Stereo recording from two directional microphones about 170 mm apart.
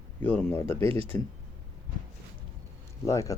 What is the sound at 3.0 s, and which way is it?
Speech, 20° left (ahead or behind).